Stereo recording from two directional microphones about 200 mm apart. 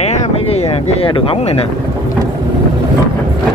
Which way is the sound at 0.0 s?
35° left (ahead or behind).